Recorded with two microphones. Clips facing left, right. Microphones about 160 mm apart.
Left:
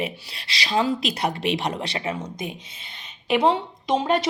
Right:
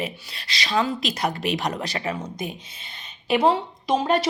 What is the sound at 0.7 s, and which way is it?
A woman's voice, 30° left (ahead or behind).